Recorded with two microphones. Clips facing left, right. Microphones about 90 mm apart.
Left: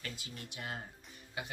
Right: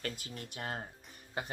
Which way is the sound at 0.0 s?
45° right (ahead or behind).